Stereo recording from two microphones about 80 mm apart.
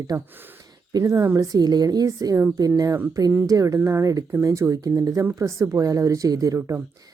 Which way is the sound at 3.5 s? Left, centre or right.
Right.